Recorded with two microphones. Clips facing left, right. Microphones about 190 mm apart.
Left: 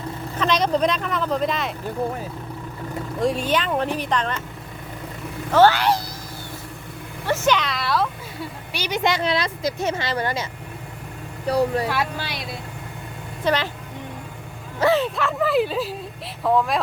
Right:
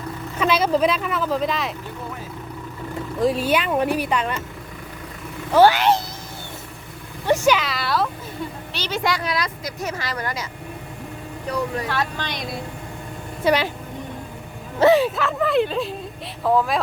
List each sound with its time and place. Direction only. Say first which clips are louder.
0.3 s speech: right 1 dB; 5° right (ahead or behind)
3.2 s speech: right 2 dB; centre (ahead or behind)
5.5 s speech: right 1 dB; 10° right (ahead or behind)
7.3 s speech: right 3 dB; 10° right (ahead or behind)
8.7 s a woman's voice: left 3 dB; 10° left (ahead or behind)
9.0 s speech: left 3 dB; 25° left (ahead or behind)
11.4 s speech: left 5 dB; 35° left (ahead or behind)
11.9 s speech: even; 10° left (ahead or behind)
13.4 s a woman's voice: right 3 dB; 10° right (ahead or behind)
14.9 s speech: right 2 dB; 5° right (ahead or behind)